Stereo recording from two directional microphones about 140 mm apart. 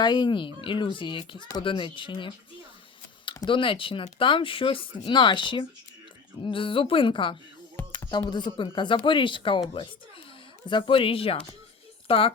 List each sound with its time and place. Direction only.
0.0 s speech: 30° left (ahead or behind)
10.7 s speech: 35° left (ahead or behind)